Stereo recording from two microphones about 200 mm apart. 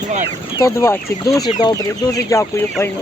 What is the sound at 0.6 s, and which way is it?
Speech, 15° left (ahead or behind).